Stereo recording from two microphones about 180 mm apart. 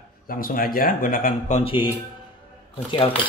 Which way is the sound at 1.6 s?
30° left (ahead or behind).